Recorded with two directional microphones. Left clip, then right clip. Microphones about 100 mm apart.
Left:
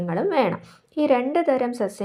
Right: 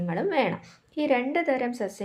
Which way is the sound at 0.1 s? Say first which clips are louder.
Left 4 dB; 35° left (ahead or behind).